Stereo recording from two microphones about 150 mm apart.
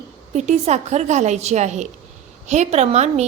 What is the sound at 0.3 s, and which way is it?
A woman's voice, 50° right (ahead or behind).